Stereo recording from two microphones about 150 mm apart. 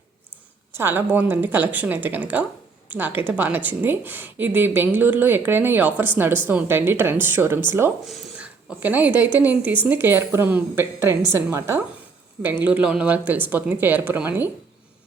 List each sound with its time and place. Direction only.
0.8 s a woman's voice: 15° right (ahead or behind)
8.0 s a woman's voice: centre (ahead or behind)